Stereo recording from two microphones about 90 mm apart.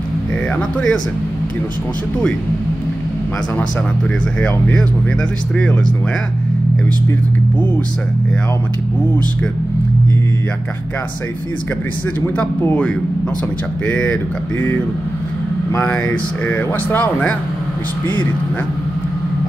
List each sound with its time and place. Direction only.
0.6 s a man's voice: 10° left (ahead or behind)
4.4 s a man's voice: 15° left (ahead or behind)
12.4 s a man's voice: 15° left (ahead or behind)
15.7 s speech: 30° left (ahead or behind)
16.4 s speech: 20° left (ahead or behind)